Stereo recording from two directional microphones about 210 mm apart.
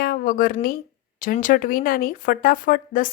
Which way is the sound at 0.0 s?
45° left (ahead or behind).